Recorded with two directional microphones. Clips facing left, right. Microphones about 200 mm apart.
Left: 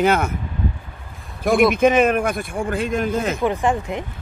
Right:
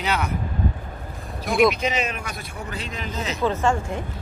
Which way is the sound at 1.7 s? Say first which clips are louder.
Left 11 dB; 50° left (ahead or behind).